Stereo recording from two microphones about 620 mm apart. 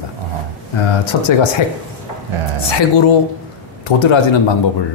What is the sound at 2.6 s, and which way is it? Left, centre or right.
Speech, left.